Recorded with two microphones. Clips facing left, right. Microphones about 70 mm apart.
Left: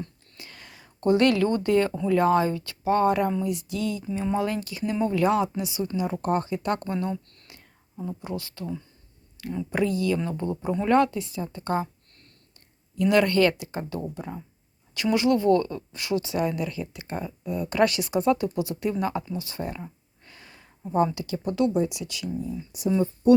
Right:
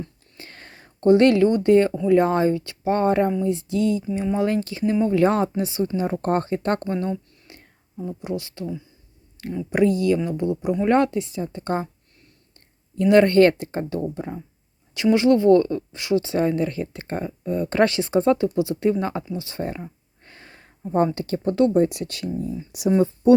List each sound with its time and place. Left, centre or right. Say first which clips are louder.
0.3 s whispering: right 3 dB; right
1.0 s speech: right 5 dB; right
6.8 s speech: right 3 dB; right
7.5 s whispering: right 4 dB; right
8.2 s speech: right 5 dB; right
8.6 s speech: right 3 dB; centre
9.6 s speech: right 6 dB; right
10.8 s speech: right 1 dB; right
13.0 s speech: right 6 dB; right
20.2 s a sound: right 3 dB; right
21.2 s speech: right 5 dB; right
22.7 s speech: right 4 dB; right